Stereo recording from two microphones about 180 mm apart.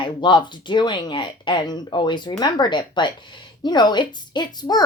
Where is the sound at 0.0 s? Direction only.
25° left (ahead or behind).